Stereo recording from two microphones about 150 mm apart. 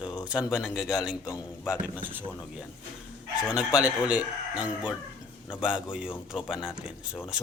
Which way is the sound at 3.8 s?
10° right (ahead or behind).